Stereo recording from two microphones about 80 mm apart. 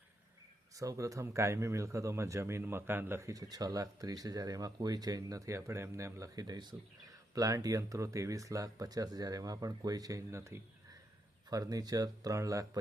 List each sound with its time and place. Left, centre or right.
0.8 s speech: right
3.2 s speech: right
7.3 s speech: right
11.4 s speech: right